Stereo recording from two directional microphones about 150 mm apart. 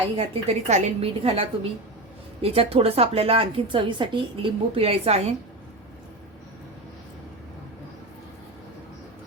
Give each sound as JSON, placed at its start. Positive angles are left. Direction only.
{"t": 0.2, "sound": "a woman's voice", "side_deg": -40}